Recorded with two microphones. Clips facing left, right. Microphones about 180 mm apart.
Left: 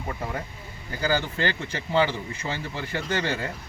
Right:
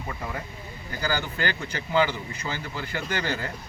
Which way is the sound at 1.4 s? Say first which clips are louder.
Left 2 dB; 25° left (ahead or behind).